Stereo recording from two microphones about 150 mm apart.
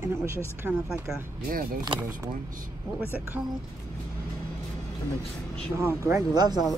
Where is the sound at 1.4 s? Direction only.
75° right (ahead or behind).